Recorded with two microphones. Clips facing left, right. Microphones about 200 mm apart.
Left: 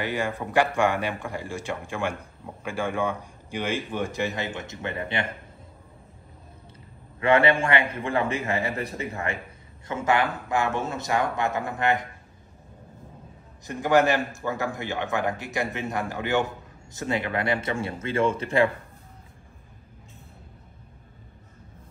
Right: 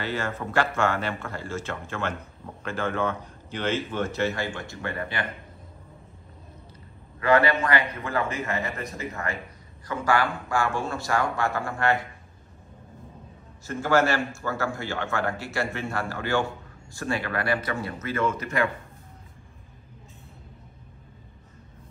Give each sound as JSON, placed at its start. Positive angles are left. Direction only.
{"t": 0.0, "sound": "a man's voice", "side_deg": 15}
{"t": 7.2, "sound": "a man's voice", "side_deg": 30}
{"t": 13.7, "sound": "a man's voice", "side_deg": 15}